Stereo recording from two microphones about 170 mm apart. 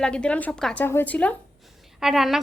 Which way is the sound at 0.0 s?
5° left (ahead or behind).